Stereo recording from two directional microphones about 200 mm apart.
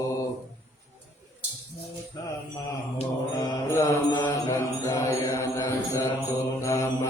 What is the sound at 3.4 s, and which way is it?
Mantra, 15° left (ahead or behind).